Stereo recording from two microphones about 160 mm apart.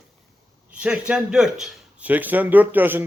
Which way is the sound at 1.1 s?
5° right (ahead or behind).